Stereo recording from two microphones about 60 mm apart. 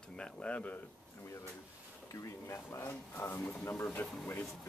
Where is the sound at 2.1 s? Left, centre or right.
Left.